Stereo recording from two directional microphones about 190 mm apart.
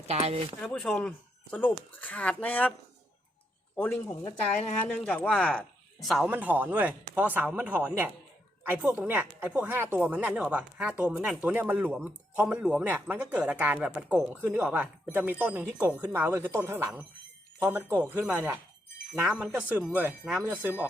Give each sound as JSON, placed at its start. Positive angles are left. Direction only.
{"t": 0.1, "sound": "speech", "side_deg": -35}
{"t": 0.6, "sound": "speech", "side_deg": 5}
{"t": 3.8, "sound": "speech", "side_deg": 10}